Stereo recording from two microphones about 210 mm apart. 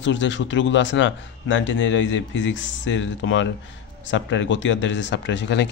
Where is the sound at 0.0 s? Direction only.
60° left (ahead or behind).